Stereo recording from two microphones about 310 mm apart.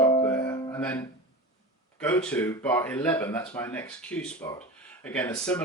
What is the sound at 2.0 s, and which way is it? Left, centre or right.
Speech, centre.